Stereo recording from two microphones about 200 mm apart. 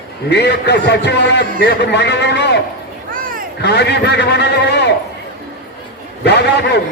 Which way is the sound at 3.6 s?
55° left (ahead or behind).